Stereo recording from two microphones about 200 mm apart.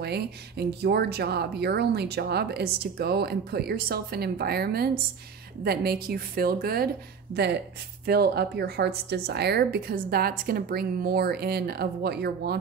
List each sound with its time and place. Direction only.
0.0 s a woman's voice: 55° right (ahead or behind)